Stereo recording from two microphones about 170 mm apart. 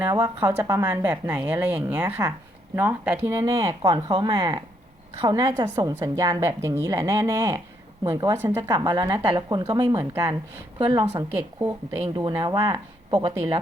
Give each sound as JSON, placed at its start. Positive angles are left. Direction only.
{"t": 0.0, "sound": "speech", "side_deg": -10}
{"t": 8.7, "sound": "speech", "side_deg": -25}
{"t": 11.6, "sound": "speech", "side_deg": -20}